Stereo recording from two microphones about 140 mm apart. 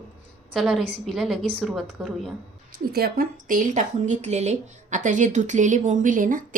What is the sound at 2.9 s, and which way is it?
Speech, 90° right.